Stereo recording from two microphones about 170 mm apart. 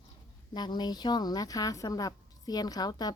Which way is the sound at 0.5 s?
25° left (ahead or behind).